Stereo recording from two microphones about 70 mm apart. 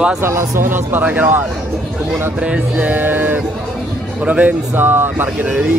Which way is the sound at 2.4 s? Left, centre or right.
Centre.